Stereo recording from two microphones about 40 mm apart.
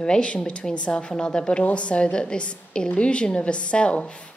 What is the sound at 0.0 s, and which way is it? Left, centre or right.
A woman's voice, left.